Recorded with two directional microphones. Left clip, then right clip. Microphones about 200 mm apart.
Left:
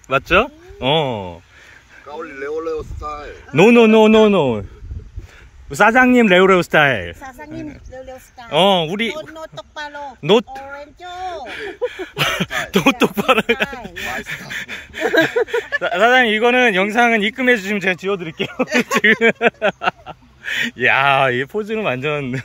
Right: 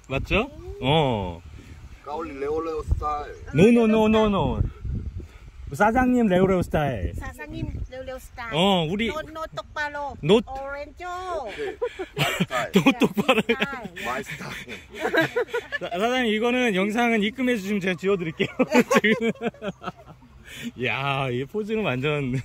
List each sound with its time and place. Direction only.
0.1 s a man's voice: 5° right (ahead or behind)
2.0 s a sound: 60° right (ahead or behind)
3.0 s speech: 40° right (ahead or behind)
3.7 s a man's voice: 50° left (ahead or behind)
5.7 s a man's voice: 50° left (ahead or behind)
8.4 s a man's voice: 10° right (ahead or behind)
9.9 s a man's voice: 10° right (ahead or behind)
10.8 s child singing: 20° right (ahead or behind)
11.4 s a man's voice: 10° right (ahead or behind)
15.0 s speech: 40° left (ahead or behind)
15.8 s a man's voice: 5° right (ahead or behind)
18.7 s a sound: 60° right (ahead or behind)
19.2 s speech: 30° left (ahead or behind)
20.4 s speech: centre (ahead or behind)